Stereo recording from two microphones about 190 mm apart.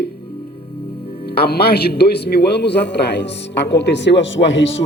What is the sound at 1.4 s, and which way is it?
A man's voice, 55° left (ahead or behind).